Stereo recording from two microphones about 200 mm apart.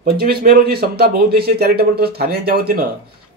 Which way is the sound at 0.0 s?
50° right (ahead or behind).